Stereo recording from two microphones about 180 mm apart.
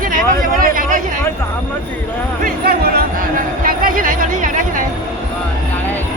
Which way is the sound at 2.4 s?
55° right (ahead or behind).